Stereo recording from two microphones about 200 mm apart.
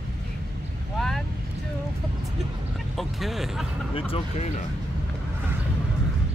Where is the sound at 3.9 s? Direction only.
25° left (ahead or behind).